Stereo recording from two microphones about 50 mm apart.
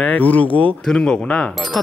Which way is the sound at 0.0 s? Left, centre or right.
Left.